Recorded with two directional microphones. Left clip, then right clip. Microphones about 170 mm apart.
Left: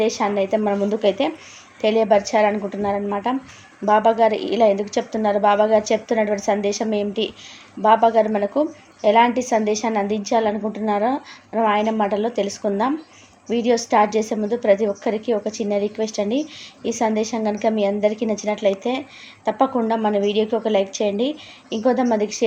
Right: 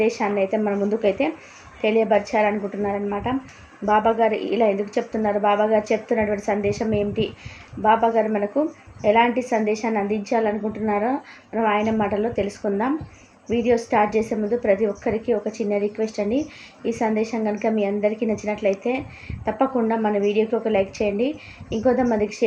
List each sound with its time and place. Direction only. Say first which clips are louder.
0.0 s a woman's voice: left 1 dB; 20° left (ahead or behind)